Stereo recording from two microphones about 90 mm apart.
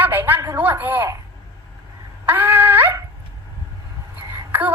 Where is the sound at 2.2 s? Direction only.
20° right (ahead or behind).